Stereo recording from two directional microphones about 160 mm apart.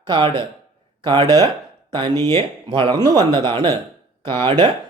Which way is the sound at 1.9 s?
25° right (ahead or behind).